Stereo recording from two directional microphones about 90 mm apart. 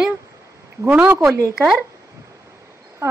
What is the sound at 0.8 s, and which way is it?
Speech, 20° right (ahead or behind).